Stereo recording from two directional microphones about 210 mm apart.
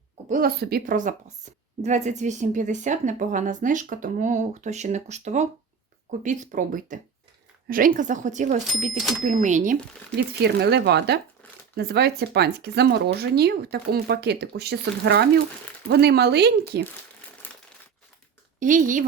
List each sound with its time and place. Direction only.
0.3 s a woman's voice: 45° right (ahead or behind)
10.2 s speech: 50° right (ahead or behind)
17.4 s crumpling: 10° left (ahead or behind)
18.6 s a woman's voice: 40° right (ahead or behind)